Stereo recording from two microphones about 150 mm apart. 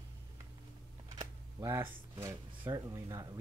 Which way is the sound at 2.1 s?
30° right (ahead or behind).